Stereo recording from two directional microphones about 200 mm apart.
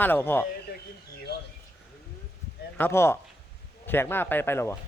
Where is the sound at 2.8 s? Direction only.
10° left (ahead or behind).